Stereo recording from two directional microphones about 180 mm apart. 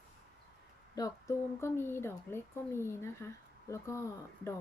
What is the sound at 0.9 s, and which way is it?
A woman's voice, 20° left (ahead or behind).